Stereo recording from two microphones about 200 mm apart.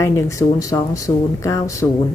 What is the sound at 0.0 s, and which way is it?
Speech, 15° left (ahead or behind).